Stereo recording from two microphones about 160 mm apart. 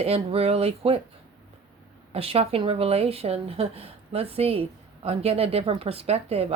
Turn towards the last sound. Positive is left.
turn(degrees=-40)  # may be behind; listen again after turning